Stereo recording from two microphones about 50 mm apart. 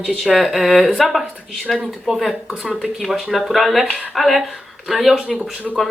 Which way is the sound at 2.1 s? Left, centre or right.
Centre.